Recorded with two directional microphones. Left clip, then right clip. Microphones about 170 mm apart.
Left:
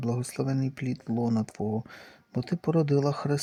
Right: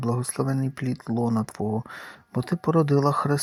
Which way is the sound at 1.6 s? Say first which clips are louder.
Right 3 dB; 5° right (ahead or behind).